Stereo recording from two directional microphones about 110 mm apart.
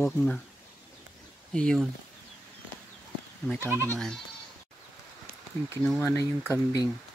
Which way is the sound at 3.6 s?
25° right (ahead or behind).